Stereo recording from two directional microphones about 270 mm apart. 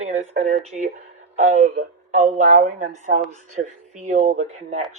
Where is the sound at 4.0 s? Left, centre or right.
Right.